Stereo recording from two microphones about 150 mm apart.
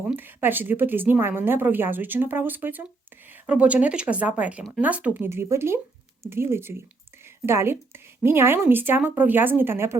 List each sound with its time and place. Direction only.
0.1 s speech: 15° right (ahead or behind)